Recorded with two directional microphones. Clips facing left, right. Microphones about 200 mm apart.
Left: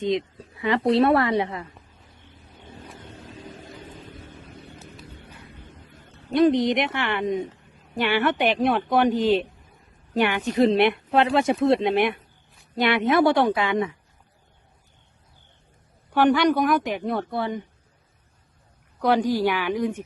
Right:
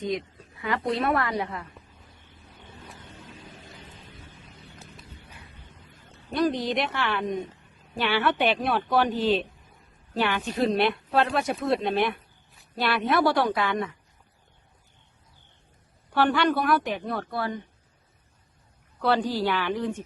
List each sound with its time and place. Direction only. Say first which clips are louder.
0.0 s a woman's voice: left 5 dB; 25° left (ahead or behind)
4.0 s vehicle: left 6 dB; 55° left (ahead or behind)
5.9 s a sound: left 3 dB; 60° left (ahead or behind)
6.3 s a woman's voice: left 6 dB; 20° left (ahead or behind)
16.1 s a woman's voice: left 4 dB; 15° left (ahead or behind)
19.0 s a woman's voice: left 4 dB; 10° left (ahead or behind)